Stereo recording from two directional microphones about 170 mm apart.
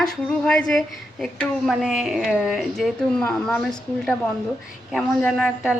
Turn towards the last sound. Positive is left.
turn(degrees=0)  # may be behind; listen again after turning